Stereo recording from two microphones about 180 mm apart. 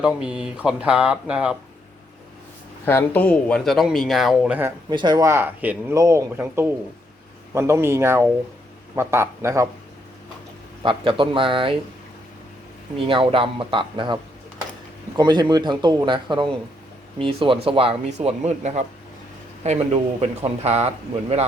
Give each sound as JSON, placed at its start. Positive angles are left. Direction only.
{"t": 0.0, "sound": "speech", "side_deg": -5}
{"t": 2.8, "sound": "speech", "side_deg": 10}
{"t": 4.9, "sound": "a man's voice", "side_deg": -25}
{"t": 10.8, "sound": "a man's voice", "side_deg": -30}
{"t": 13.1, "sound": "a man's voice", "side_deg": -30}